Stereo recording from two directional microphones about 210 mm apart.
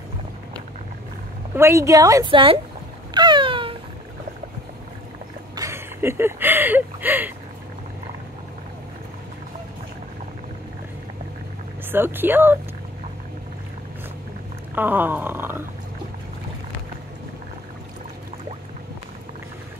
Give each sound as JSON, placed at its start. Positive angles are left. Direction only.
{"t": 1.5, "sound": "a woman's voice", "side_deg": -15}
{"t": 3.2, "sound": "cat", "side_deg": -20}
{"t": 5.6, "sound": "speech", "side_deg": -10}
{"t": 11.9, "sound": "a woman's voice", "side_deg": -10}
{"t": 14.8, "sound": "a woman's voice", "side_deg": -10}